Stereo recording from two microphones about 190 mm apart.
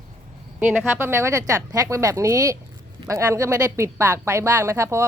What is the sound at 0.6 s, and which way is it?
A woman's voice, 5° right (ahead or behind).